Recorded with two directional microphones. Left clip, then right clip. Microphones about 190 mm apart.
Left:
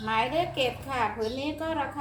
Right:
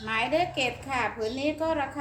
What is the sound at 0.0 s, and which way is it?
A woman's voice, 20° right (ahead or behind).